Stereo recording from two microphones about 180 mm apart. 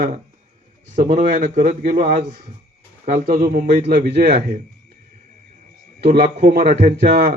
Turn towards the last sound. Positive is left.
turn(degrees=-50)  # may be behind; listen again after turning